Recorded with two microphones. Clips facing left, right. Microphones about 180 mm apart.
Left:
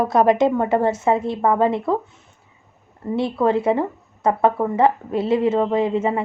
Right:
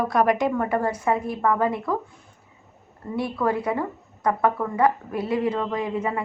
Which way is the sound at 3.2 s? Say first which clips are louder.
Left 5 dB; 25° left (ahead or behind).